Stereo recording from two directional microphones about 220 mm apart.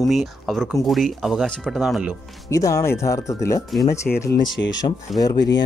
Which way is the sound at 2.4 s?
15° left (ahead or behind).